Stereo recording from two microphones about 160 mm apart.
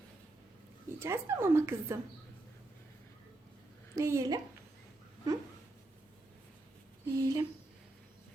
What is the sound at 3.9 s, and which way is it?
Speech, 20° right (ahead or behind).